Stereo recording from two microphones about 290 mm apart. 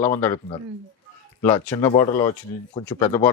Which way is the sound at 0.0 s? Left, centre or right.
Centre.